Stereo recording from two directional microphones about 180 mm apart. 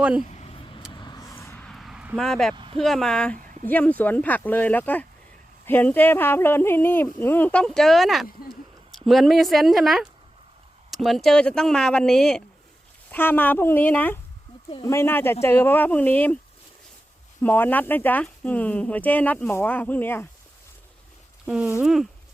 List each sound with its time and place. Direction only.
0.0 s speech: 5° right (ahead or behind)
0.3 s vehicle: 35° left (ahead or behind)
0.9 s a sound: 25° left (ahead or behind); by 2.6 s centre (ahead or behind)
2.7 s speech: centre (ahead or behind)
17.4 s speech: 10° left (ahead or behind)
21.4 s speech: 10° right (ahead or behind)